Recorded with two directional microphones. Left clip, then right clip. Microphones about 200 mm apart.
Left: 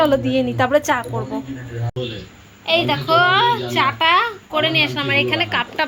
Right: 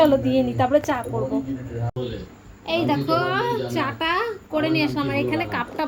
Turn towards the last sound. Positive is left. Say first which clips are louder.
# left 6 dB
turn(degrees=-5)  # may be behind; listen again after turning